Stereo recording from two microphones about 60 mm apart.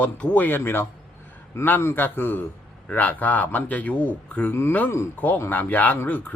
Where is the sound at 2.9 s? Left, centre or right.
Left.